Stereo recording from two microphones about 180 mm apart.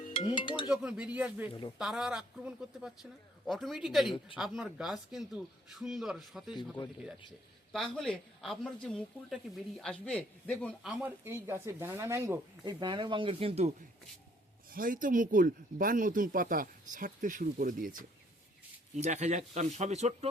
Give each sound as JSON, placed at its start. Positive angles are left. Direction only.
{"t": 0.1, "sound": "speech", "side_deg": 30}
{"t": 0.7, "sound": "speech", "side_deg": -5}
{"t": 6.6, "sound": "speech", "side_deg": 20}
{"t": 7.7, "sound": "speech", "side_deg": 5}
{"t": 10.9, "sound": "speech", "side_deg": -10}
{"t": 14.7, "sound": "speech", "side_deg": -50}